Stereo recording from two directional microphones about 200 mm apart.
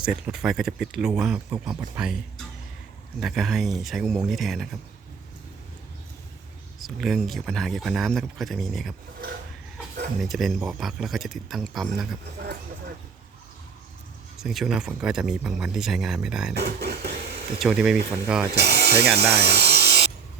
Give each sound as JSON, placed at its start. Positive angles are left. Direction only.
{"t": 0.0, "sound": "speech", "side_deg": -5}
{"t": 3.2, "sound": "speech", "side_deg": 0}
{"t": 6.7, "sound": "speech", "side_deg": 0}
{"t": 10.2, "sound": "speech", "side_deg": 0}
{"t": 14.4, "sound": "speech", "side_deg": 0}
{"t": 16.6, "sound": "a sound", "side_deg": -55}
{"t": 17.6, "sound": "speech", "side_deg": -5}
{"t": 18.5, "sound": "speech", "side_deg": -55}
{"t": 19.3, "sound": "a sound", "side_deg": -55}